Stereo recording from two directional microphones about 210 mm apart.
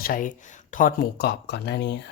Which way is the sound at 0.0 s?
40° left (ahead or behind).